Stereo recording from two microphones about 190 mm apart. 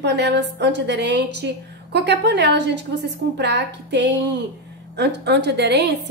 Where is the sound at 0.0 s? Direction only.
65° right (ahead or behind).